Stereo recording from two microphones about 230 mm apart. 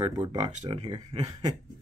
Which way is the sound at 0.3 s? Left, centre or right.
Right.